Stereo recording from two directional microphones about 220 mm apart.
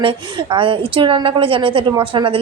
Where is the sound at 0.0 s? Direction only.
20° right (ahead or behind).